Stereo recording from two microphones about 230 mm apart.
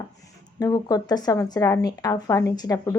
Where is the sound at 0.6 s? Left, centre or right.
Centre.